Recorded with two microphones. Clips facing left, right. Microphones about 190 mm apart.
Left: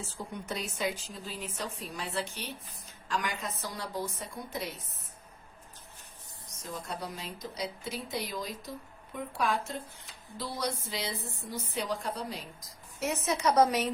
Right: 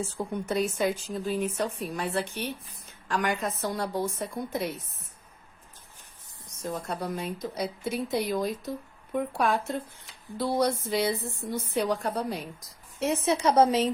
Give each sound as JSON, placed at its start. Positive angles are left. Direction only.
{"t": 0.4, "sound": "speech", "side_deg": -50}
{"t": 6.7, "sound": "speech", "side_deg": -55}
{"t": 13.0, "sound": "a woman's voice", "side_deg": -30}